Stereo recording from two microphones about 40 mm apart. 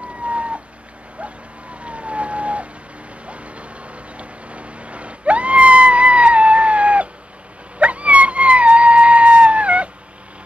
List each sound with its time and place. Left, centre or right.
0.2 s a sound: right
1.8 s vehicle: right
7.8 s dog: right